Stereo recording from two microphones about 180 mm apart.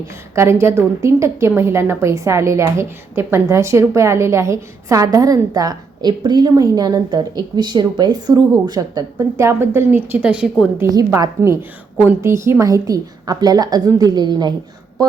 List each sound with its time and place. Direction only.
0.3 s a woman's voice: 15° right (ahead or behind)
10.8 s a woman's voice: 20° right (ahead or behind)